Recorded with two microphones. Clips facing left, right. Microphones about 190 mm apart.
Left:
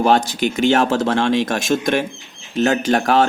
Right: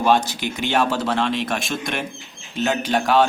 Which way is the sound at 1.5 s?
45° left (ahead or behind).